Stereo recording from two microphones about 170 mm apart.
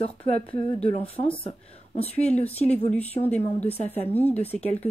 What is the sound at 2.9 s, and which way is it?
A woman's voice, 10° left (ahead or behind).